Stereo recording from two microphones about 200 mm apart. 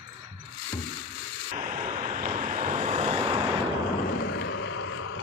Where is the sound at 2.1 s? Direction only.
40° right (ahead or behind).